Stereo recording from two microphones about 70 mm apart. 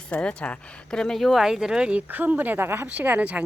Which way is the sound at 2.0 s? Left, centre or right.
Right.